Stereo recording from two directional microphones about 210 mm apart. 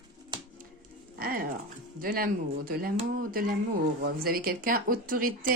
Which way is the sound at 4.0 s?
45° right (ahead or behind).